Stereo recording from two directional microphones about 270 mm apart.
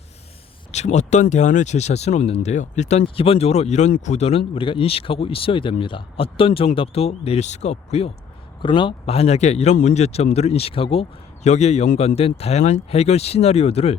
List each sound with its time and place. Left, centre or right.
0.7 s speech: left